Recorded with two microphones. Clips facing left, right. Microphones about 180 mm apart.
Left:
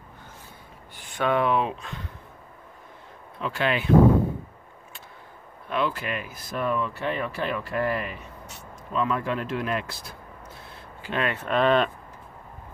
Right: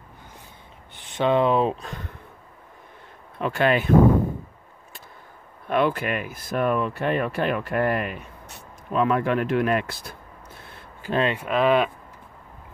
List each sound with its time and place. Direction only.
0.9 s speech: 20° right (ahead or behind); by 2.0 s 40° right (ahead or behind)
3.3 s speech: 50° right (ahead or behind)
5.7 s speech: 55° right (ahead or behind)
11.0 s a sound: 40° right (ahead or behind)
11.3 s speech: 5° right (ahead or behind)